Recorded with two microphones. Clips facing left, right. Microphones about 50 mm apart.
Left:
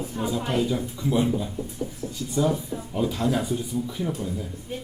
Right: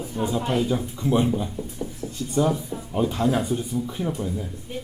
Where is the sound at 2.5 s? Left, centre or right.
Centre.